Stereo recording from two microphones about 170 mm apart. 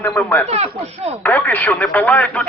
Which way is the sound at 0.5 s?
40° right (ahead or behind).